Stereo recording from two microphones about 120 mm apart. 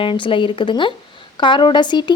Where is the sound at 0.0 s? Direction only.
45° left (ahead or behind).